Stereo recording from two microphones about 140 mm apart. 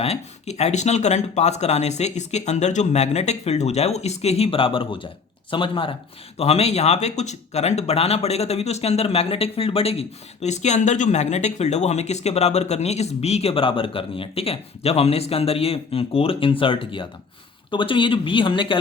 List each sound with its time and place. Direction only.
0.0 s speech: 50° left (ahead or behind)